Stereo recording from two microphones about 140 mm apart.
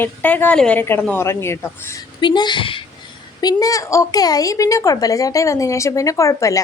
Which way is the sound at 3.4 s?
25° left (ahead or behind).